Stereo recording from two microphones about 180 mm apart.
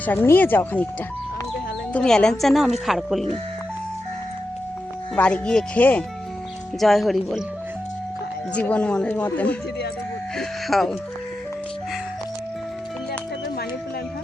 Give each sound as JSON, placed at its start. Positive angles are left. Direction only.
{"t": 0.0, "sound": "speech", "side_deg": 10}
{"t": 1.9, "sound": "speech", "side_deg": 5}
{"t": 5.1, "sound": "speech", "side_deg": 5}
{"t": 8.5, "sound": "speech", "side_deg": 5}